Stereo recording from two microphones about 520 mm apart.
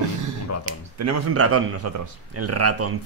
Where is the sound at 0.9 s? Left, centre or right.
Right.